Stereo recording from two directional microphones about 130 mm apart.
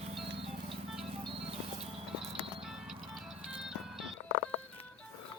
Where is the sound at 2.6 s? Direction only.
Centre (ahead or behind).